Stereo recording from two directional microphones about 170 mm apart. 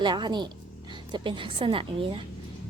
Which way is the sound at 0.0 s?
25° right (ahead or behind).